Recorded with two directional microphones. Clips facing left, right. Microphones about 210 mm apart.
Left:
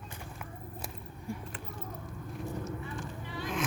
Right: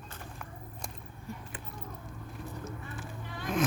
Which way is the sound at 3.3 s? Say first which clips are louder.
Right 3 dB; 45° right (ahead or behind).